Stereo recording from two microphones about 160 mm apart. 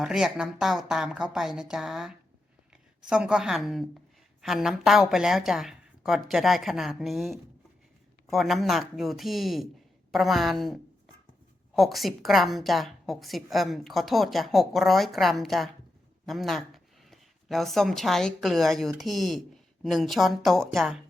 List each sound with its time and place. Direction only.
0.0 s a woman's voice: 5° right (ahead or behind)